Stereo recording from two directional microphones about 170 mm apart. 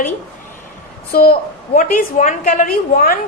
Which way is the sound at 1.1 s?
60° left (ahead or behind).